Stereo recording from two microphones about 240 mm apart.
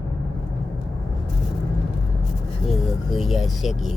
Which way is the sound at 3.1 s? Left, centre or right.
Centre.